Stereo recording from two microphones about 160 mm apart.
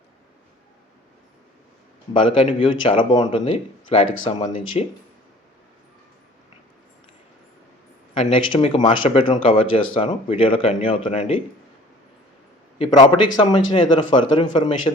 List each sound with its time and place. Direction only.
2.1 s speech: 30° left (ahead or behind)
8.1 s speech: 35° left (ahead or behind)
12.8 s speech: 25° left (ahead or behind)